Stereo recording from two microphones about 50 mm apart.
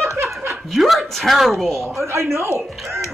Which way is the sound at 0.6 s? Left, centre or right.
Centre.